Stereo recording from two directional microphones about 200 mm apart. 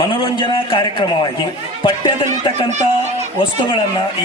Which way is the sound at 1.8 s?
25° left (ahead or behind).